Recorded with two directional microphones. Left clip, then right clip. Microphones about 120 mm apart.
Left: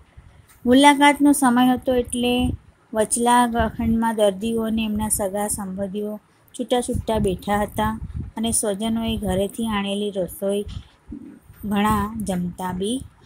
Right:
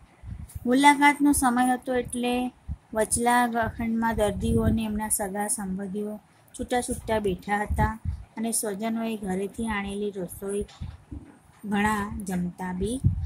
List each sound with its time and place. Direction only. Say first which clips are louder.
0.7 s speech: left 5 dB; 30° left (ahead or behind)
11.7 s a woman's voice: left 5 dB; 40° left (ahead or behind)